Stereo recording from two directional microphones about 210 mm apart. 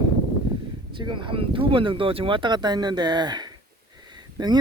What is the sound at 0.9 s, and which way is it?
Speech, 25° right (ahead or behind).